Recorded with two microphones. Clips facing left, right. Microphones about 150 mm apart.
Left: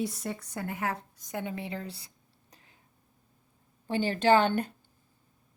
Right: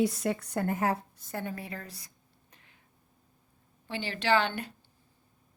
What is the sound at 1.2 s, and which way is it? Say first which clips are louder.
Speech: left 1 dB; 15° left (ahead or behind).